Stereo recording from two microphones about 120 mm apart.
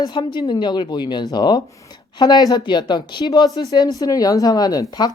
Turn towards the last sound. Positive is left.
turn(degrees=35)  # may be behind; listen again after turning